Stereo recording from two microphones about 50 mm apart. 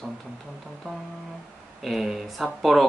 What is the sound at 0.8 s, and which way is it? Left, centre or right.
Music, left.